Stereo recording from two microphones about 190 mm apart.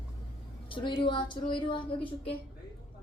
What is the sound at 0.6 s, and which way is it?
A woman's voice, 25° left (ahead or behind).